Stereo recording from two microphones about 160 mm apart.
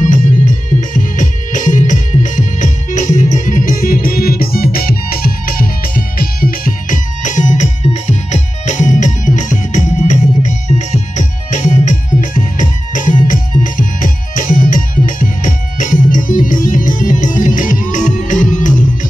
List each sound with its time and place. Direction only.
0.7 s music: 55° left (ahead or behind)